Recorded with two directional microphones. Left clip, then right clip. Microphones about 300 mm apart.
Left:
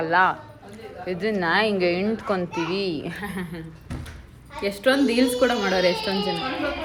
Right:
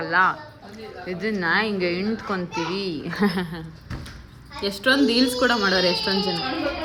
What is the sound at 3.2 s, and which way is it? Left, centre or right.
Speech, right.